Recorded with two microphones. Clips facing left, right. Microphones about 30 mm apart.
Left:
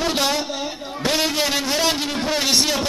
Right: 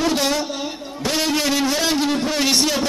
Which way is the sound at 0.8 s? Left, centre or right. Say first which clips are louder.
Left 3 dB; left.